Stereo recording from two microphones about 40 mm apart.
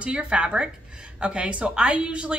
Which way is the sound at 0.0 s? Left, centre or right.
Right.